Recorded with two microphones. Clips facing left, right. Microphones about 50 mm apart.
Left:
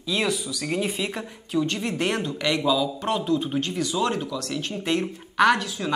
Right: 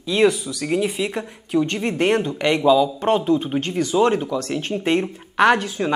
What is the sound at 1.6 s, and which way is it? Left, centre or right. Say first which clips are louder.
Speech: right 4 dB; right.